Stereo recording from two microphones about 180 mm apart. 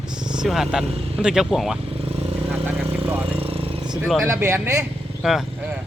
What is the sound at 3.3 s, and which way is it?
Vehicle, 30° right (ahead or behind).